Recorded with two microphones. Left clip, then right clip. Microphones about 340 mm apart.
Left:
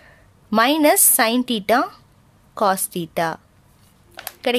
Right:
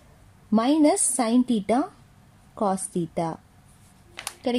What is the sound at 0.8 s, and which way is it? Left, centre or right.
Speech, left.